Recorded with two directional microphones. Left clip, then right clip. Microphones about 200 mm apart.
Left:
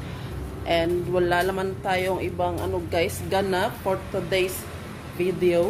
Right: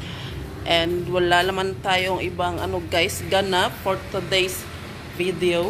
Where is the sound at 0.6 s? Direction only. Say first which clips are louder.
Right 2 dB; 5° left (ahead or behind).